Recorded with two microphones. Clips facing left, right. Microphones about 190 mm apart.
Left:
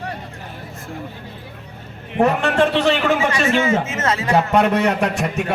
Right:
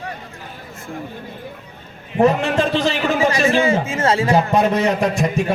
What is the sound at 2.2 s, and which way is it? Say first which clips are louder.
Speech: even; 65° left (ahead or behind).